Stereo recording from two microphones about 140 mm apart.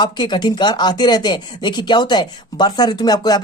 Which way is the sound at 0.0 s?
35° left (ahead or behind).